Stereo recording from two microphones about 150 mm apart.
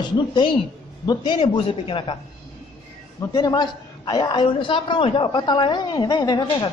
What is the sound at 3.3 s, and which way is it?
A man's voice, 30° left (ahead or behind).